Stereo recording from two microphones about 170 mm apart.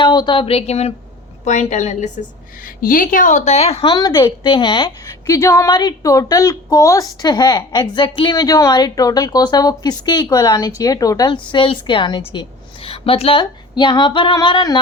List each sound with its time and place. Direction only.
0.0 s a woman's voice: 25° left (ahead or behind); by 2.0 s 45° left (ahead or behind)
2.6 s a woman's voice: 55° left (ahead or behind); by 14.8 s 25° left (ahead or behind)